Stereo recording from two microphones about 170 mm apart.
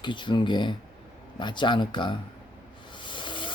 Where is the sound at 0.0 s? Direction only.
30° left (ahead or behind).